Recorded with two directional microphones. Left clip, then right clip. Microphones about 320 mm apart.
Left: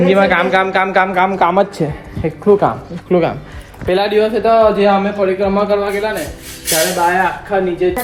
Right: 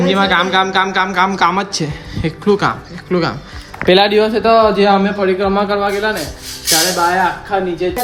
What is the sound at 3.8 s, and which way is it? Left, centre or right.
A man's voice, right.